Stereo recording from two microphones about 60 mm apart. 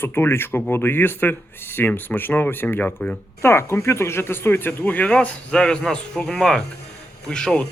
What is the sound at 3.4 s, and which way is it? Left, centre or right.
Speech, left.